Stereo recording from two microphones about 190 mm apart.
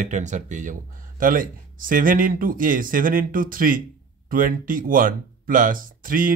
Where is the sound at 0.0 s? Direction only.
40° right (ahead or behind).